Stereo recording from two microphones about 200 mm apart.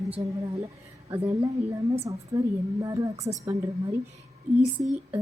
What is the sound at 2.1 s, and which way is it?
Speech, 15° right (ahead or behind).